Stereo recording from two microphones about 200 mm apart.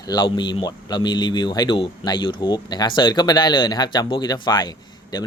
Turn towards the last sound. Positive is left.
turn(degrees=20)  # may be behind; listen again after turning